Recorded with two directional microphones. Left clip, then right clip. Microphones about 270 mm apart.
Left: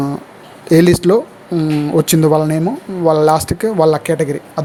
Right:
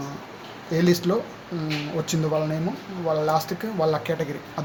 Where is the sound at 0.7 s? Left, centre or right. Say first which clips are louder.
Left 12 dB; left.